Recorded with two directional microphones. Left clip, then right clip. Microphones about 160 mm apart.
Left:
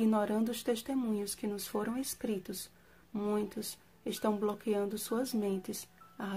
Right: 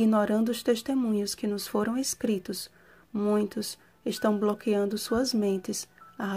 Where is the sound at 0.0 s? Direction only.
35° right (ahead or behind).